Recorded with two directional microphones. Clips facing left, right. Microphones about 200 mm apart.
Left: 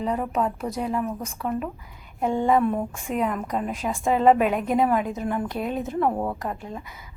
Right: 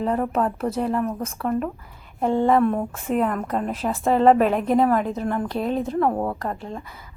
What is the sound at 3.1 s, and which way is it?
A woman's voice, 5° left (ahead or behind).